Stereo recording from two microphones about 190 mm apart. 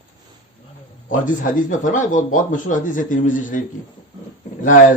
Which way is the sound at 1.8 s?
40° left (ahead or behind).